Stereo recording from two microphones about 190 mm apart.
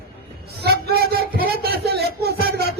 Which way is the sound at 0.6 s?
55° right (ahead or behind).